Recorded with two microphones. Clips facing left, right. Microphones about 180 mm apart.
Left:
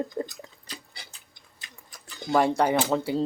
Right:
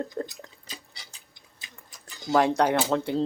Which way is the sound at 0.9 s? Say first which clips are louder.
Left 2 dB; 55° left (ahead or behind).